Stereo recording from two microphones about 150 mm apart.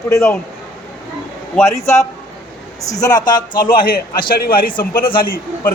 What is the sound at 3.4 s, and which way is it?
Speech, 70° left (ahead or behind).